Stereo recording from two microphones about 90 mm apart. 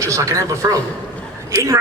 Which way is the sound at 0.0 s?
35° right (ahead or behind).